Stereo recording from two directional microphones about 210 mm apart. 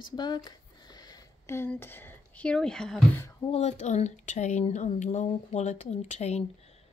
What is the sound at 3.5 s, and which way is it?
Speech, 30° left (ahead or behind).